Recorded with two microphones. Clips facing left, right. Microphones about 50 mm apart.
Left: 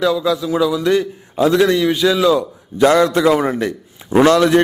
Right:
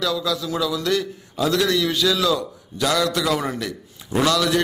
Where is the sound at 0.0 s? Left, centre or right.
Left.